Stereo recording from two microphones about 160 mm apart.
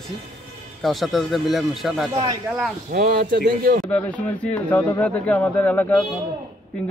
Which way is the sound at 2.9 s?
70° right (ahead or behind).